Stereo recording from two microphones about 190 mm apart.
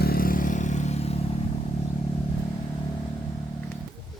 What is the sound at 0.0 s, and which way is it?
Vehicle, 50° left (ahead or behind).